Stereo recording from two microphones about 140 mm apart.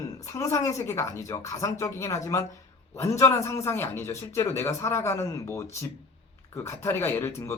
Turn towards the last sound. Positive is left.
turn(degrees=15)  # may be behind; listen again after turning